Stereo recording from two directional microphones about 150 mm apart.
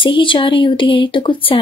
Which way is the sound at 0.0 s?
35° left (ahead or behind).